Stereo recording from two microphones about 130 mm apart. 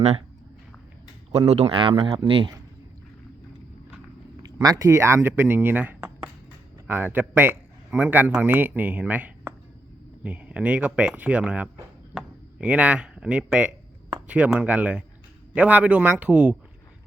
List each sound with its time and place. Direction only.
1.3 s speech: 55° right (ahead or behind)
4.6 s speech: 30° right (ahead or behind); by 16.6 s 10° right (ahead or behind)